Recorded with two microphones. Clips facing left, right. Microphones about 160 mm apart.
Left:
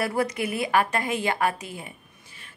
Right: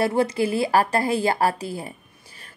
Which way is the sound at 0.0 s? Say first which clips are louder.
Right 5 dB; 30° right (ahead or behind).